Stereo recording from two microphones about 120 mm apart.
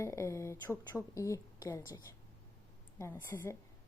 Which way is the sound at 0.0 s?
25° left (ahead or behind).